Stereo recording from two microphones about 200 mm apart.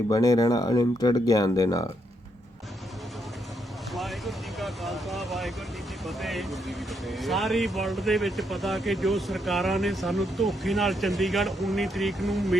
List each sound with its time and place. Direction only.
0.1 s speech: 20° left (ahead or behind)
3.9 s vehicle: centre (ahead or behind)
6.1 s speech: centre (ahead or behind)